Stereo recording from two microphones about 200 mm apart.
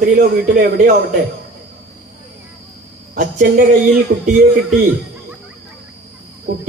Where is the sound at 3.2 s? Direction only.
45° right (ahead or behind).